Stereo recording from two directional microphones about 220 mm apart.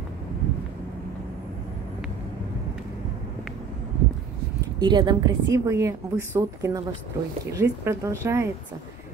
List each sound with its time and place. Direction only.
4.7 s a woman's voice: 20° right (ahead or behind)